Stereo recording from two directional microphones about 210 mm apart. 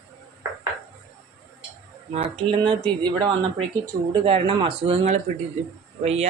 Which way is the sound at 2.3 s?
25° right (ahead or behind).